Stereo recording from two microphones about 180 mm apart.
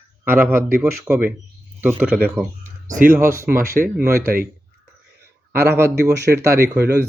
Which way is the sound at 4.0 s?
55° right (ahead or behind).